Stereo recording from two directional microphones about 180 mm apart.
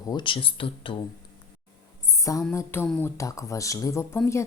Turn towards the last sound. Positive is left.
turn(degrees=15)  # may be behind; listen again after turning